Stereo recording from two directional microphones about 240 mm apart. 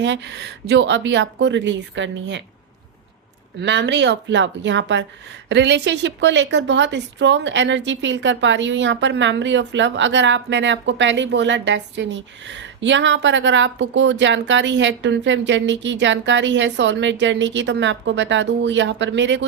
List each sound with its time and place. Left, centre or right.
0.0 s a woman's voice: right
3.6 s a woman's voice: right